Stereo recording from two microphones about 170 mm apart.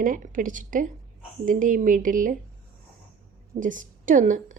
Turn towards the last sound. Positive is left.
turn(degrees=-50)  # may be behind; listen again after turning